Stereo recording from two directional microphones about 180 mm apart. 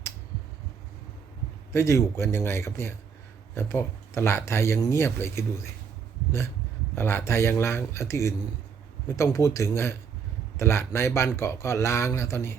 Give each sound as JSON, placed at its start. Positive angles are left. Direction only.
{"t": 1.7, "sound": "speech", "side_deg": 15}
{"t": 6.9, "sound": "speech", "side_deg": 15}